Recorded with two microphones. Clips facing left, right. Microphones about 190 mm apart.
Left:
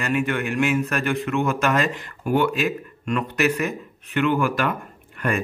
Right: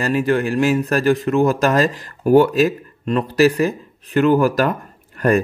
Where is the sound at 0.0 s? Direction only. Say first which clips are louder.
Right 6 dB; 35° right (ahead or behind).